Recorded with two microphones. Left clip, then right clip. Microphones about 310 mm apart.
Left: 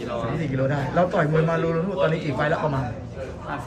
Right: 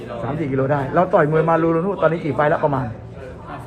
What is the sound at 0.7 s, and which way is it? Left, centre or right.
A man's voice, centre.